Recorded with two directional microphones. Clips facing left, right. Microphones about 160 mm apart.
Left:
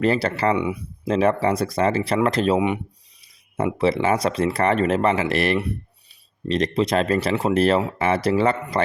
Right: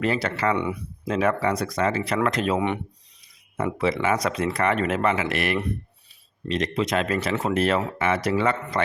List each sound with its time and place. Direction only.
0.0 s speech: 35° left (ahead or behind)
0.5 s speech: 10° left (ahead or behind)
1.0 s speech: 30° left (ahead or behind)
2.6 s speech: 10° left (ahead or behind)
3.8 s speech: 30° left (ahead or behind)